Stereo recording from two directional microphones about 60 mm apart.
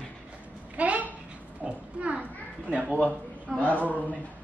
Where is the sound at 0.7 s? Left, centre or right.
Right.